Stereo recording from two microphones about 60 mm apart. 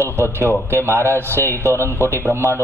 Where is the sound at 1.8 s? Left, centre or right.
Right.